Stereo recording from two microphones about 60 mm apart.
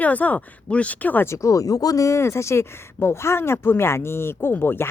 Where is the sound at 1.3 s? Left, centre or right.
Left.